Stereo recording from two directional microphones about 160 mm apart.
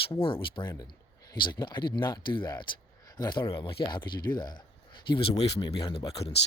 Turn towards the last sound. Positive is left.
turn(degrees=35)  # may be behind; listen again after turning